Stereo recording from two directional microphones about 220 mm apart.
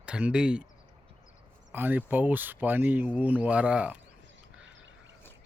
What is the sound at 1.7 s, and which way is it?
Speech, 10° right (ahead or behind).